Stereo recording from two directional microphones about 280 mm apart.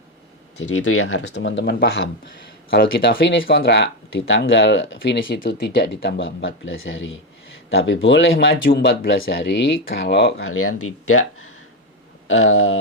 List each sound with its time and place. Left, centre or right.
0.8 s speech: left
12.4 s speech: left